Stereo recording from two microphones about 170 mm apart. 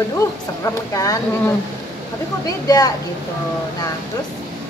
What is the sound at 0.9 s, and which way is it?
Speech, 20° left (ahead or behind).